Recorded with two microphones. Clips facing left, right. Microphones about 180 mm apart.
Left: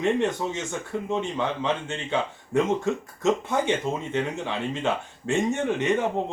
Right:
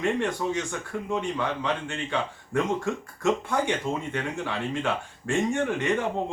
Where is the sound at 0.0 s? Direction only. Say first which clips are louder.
Left 2 dB; 20° left (ahead or behind).